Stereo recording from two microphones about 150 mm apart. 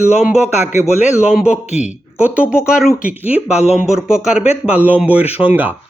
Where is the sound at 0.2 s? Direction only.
10° right (ahead or behind).